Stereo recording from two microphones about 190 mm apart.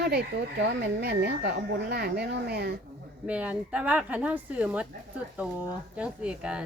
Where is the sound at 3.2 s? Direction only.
5° right (ahead or behind).